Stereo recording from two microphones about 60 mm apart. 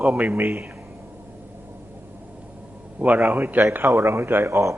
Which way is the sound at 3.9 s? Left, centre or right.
Right.